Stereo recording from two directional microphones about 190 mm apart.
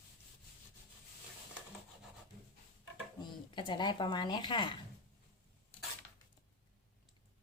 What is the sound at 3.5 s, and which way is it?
A woman's voice, 25° left (ahead or behind).